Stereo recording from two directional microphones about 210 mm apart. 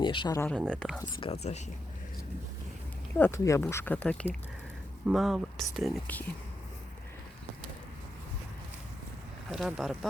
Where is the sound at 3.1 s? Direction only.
10° left (ahead or behind).